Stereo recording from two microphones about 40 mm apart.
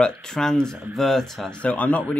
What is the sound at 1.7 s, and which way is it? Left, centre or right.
Speech, left.